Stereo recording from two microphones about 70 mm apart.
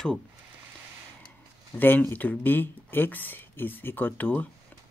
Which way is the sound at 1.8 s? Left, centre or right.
Left.